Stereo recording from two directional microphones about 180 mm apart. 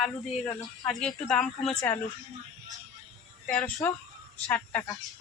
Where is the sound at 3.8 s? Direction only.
10° left (ahead or behind).